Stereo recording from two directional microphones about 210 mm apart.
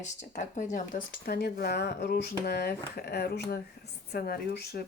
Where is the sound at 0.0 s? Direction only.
35° left (ahead or behind); by 4.9 s 50° left (ahead or behind).